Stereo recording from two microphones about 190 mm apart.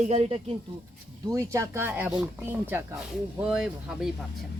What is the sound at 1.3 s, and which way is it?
Speech, 15° right (ahead or behind).